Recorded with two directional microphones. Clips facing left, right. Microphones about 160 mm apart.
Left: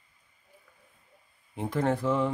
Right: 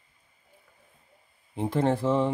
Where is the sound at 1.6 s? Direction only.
30° right (ahead or behind).